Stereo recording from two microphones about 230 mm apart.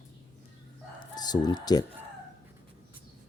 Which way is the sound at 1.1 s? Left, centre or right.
Centre.